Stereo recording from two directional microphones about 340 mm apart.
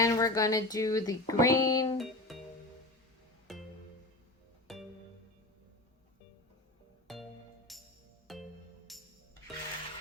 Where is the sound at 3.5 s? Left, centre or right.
Centre.